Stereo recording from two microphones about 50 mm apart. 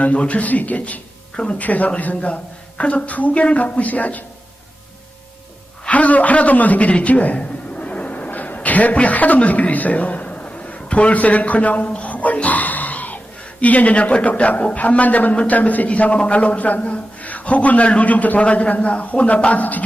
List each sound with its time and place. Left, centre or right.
0.0 s a man's voice: left
5.9 s a man's voice: left
11.9 s music: left
13.6 s a man's voice: left